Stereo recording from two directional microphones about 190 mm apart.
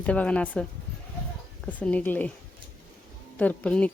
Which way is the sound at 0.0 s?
5° left (ahead or behind).